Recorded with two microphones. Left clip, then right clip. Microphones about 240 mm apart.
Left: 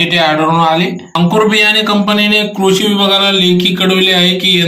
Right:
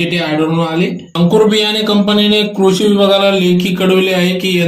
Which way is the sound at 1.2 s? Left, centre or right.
Left.